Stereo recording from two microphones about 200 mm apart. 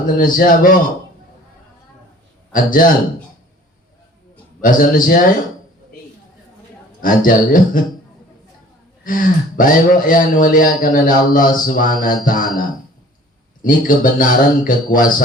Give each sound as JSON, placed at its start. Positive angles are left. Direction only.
{"t": 0.0, "sound": "a man's voice", "side_deg": 45}
{"t": 2.5, "sound": "a man's voice", "side_deg": 45}
{"t": 4.6, "sound": "a man's voice", "side_deg": 45}
{"t": 7.0, "sound": "a man's voice", "side_deg": 45}
{"t": 9.0, "sound": "a man's voice", "side_deg": 45}
{"t": 13.6, "sound": "a man's voice", "side_deg": 45}